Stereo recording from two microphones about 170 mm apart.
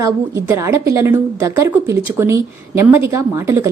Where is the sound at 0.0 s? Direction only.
15° right (ahead or behind).